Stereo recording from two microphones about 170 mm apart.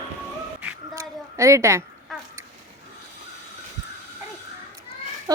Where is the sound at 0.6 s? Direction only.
15° right (ahead or behind).